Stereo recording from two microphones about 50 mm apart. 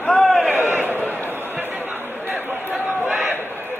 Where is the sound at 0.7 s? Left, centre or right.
Right.